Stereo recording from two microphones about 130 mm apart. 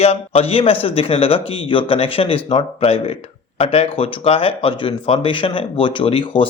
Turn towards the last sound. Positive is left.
turn(degrees=40)  # may be behind; listen again after turning